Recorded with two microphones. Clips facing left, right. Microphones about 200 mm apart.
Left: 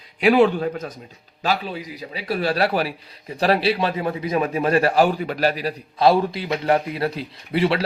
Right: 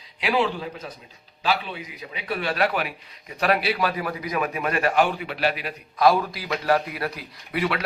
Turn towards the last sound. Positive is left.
turn(degrees=30)  # may be behind; listen again after turning